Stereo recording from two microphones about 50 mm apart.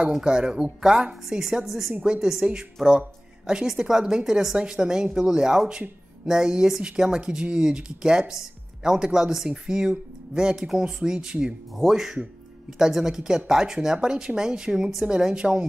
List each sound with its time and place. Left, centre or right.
0.2 s speech: centre
1.3 s chopping: centre
2.4 s speech: centre
11.7 s chopping: centre
12.2 s speech: centre